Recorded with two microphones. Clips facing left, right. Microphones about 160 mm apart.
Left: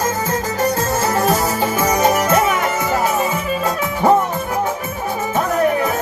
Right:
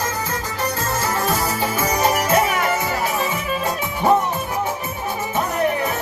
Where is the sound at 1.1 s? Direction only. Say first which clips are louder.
Left 5 dB; 45° left (ahead or behind).